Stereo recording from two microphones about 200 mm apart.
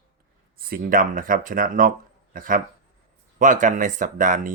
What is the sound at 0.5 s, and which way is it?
Speech, 45° right (ahead or behind).